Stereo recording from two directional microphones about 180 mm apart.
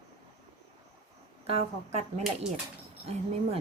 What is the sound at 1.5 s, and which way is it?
Speech, 35° right (ahead or behind).